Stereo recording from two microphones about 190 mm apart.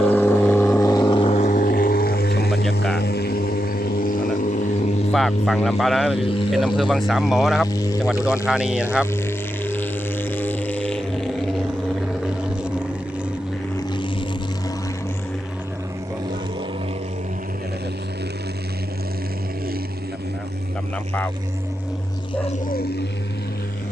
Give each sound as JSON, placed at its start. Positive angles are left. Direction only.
{"t": 0.1, "sound": "vehicle", "side_deg": 10}
{"t": 3.0, "sound": "didgeridoo", "side_deg": 55}
{"t": 5.1, "sound": "speech", "side_deg": 0}
{"t": 7.7, "sound": "speech", "side_deg": 20}
{"t": 7.9, "sound": "speech", "side_deg": -5}
{"t": 9.1, "sound": "music", "side_deg": 10}
{"t": 13.7, "sound": "vehicle", "side_deg": 25}